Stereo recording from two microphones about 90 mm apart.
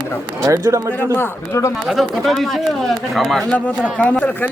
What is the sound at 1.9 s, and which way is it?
Speech, centre (ahead or behind).